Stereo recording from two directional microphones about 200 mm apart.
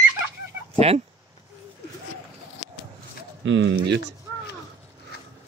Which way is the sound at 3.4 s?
70° right (ahead or behind).